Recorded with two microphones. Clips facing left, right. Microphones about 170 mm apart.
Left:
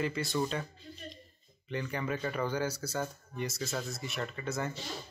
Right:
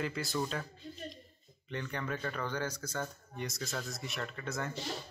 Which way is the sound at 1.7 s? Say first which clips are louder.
Left 3 dB; 5° left (ahead or behind).